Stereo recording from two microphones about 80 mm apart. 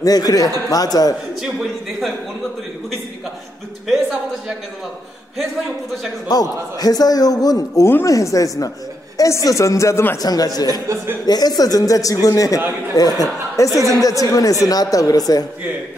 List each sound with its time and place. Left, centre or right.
0.0 s a man's voice: left
1.4 s a man's voice: centre
3.8 s a sound: centre
6.2 s a man's voice: left
7.8 s a woman's voice: left
10.1 s a man's voice: left